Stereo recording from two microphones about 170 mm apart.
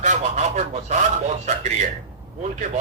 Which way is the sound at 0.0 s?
45° right (ahead or behind).